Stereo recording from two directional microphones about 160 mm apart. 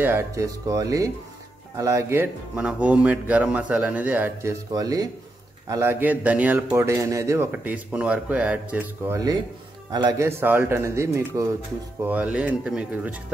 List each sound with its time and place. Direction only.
0.0 s speech: 15° right (ahead or behind)
9.8 s speech: 25° right (ahead or behind)
10.2 s speech: 15° right (ahead or behind)